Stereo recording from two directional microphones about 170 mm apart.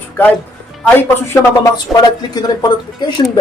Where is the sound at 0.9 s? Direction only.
15° left (ahead or behind).